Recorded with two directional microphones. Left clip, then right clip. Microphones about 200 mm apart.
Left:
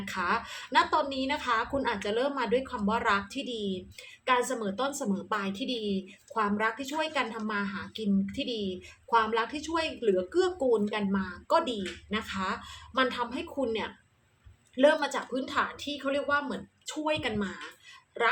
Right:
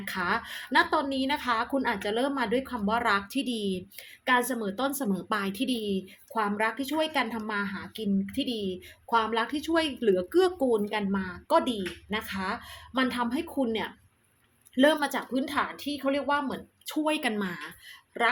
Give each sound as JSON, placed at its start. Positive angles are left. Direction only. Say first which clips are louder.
{"t": 0.0, "sound": "a woman's voice", "louder": "right 1 dB", "side_deg": -35}